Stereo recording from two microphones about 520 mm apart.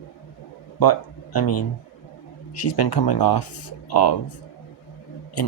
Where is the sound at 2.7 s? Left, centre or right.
Left.